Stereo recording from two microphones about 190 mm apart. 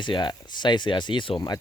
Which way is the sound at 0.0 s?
25° left (ahead or behind).